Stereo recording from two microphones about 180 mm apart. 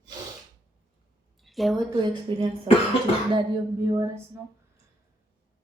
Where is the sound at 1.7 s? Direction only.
25° right (ahead or behind).